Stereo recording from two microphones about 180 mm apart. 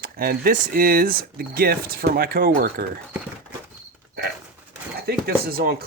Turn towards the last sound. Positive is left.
turn(degrees=-55)  # may be behind; listen again after turning